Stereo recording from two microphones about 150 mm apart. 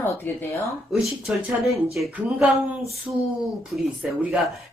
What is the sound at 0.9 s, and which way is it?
Speech, 5° right (ahead or behind).